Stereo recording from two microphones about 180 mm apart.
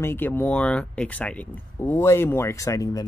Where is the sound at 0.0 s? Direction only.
15° left (ahead or behind).